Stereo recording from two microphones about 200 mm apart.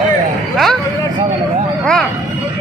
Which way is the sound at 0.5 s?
Centre (ahead or behind).